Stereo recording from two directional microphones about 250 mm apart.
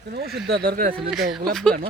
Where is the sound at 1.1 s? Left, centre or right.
Centre.